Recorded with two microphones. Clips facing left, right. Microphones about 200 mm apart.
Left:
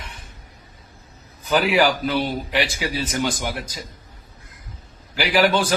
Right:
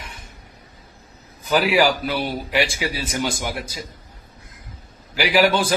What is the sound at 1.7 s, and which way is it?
A man's voice, 10° right (ahead or behind).